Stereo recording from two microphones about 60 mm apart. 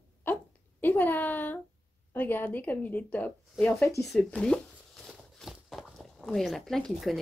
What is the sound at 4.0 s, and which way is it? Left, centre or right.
Speech, centre.